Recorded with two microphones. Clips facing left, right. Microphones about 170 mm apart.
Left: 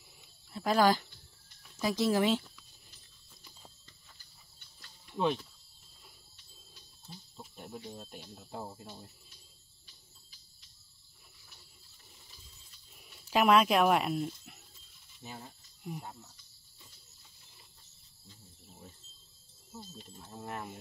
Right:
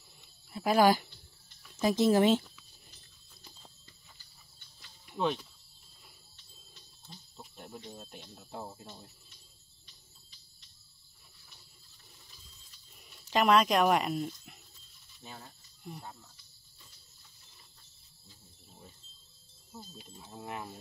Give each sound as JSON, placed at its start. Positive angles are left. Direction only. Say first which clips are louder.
{"t": 0.5, "sound": "speech", "louder": "right 2 dB", "side_deg": -5}
{"t": 2.0, "sound": "speech", "louder": "right 4 dB", "side_deg": -25}
{"t": 4.8, "sound": "cricket", "louder": "left 1 dB", "side_deg": -5}
{"t": 6.3, "sound": "wild animals", "louder": "even", "side_deg": 10}
{"t": 7.3, "sound": "speech", "louder": "left 1 dB", "side_deg": 0}
{"t": 13.1, "sound": "speech", "louder": "even", "side_deg": 5}
{"t": 20.0, "sound": "speech", "louder": "even", "side_deg": -10}